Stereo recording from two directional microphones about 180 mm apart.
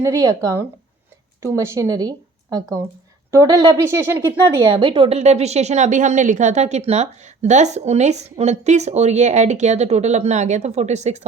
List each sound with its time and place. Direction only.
0.0 s speech: 20° right (ahead or behind)
4.6 s a woman's voice: 30° right (ahead or behind)